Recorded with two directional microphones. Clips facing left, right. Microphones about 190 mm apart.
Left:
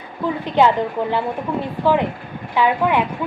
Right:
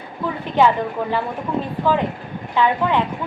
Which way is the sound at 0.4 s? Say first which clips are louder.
Left 1 dB; 15° left (ahead or behind).